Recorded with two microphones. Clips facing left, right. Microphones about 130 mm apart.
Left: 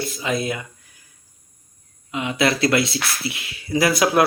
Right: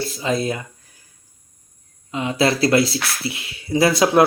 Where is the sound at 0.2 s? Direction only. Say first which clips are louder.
Right 3 dB; 35° right (ahead or behind).